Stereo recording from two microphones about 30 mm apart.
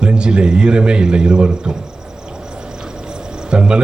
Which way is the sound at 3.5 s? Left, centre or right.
Right.